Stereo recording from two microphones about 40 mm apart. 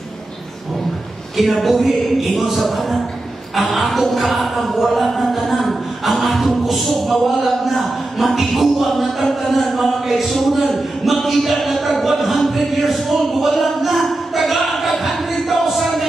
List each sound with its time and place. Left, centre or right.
1.3 s speech: centre